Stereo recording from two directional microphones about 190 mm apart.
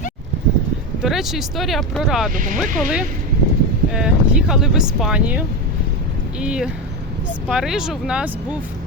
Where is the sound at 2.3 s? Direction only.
45° right (ahead or behind).